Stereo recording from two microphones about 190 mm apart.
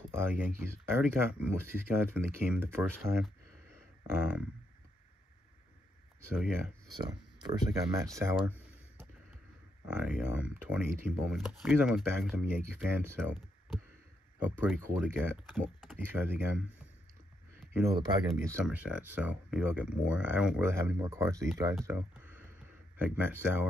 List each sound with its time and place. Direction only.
0.1 s speech: 10° right (ahead or behind)
6.3 s speech: 5° right (ahead or behind)
7.0 s speech: 25° right (ahead or behind)
14.6 s speech: 10° right (ahead or behind)
15.4 s speech: centre (ahead or behind)
15.9 s speech: 10° right (ahead or behind)
18.2 s speech: 15° right (ahead or behind)